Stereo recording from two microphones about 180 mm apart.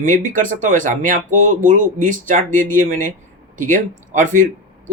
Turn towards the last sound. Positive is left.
turn(degrees=-45)  # may be behind; listen again after turning